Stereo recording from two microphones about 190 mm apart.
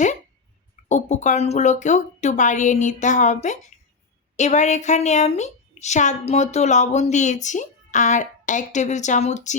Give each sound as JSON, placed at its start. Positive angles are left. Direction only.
{"t": 0.9, "sound": "a woman's voice", "side_deg": 40}